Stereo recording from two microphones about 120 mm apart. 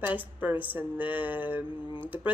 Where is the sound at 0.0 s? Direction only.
15° right (ahead or behind).